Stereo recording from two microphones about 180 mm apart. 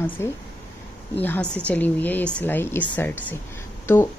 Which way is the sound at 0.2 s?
15° left (ahead or behind).